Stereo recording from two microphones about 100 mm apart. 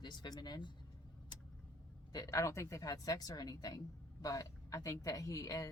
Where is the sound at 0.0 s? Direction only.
50° left (ahead or behind).